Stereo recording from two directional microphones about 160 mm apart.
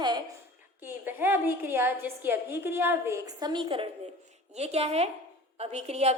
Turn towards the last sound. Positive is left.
turn(degrees=-45)  # may be behind; listen again after turning